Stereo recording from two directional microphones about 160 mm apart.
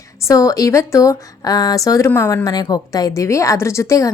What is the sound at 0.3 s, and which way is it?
A woman's voice, 20° left (ahead or behind).